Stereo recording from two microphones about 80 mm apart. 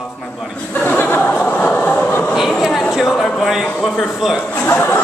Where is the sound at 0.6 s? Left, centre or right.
Centre.